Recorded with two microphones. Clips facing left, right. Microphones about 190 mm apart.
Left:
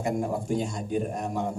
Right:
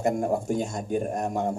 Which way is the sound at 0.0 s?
45° right (ahead or behind).